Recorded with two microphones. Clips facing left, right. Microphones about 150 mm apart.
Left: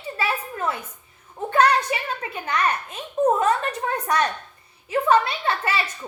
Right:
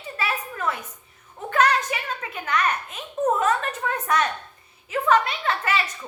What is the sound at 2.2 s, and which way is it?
Speech, 30° left (ahead or behind).